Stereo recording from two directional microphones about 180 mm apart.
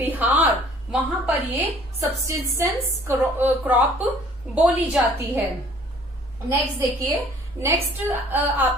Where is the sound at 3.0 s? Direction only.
10° right (ahead or behind).